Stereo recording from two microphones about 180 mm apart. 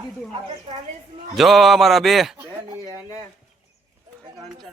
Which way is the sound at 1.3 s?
Centre (ahead or behind).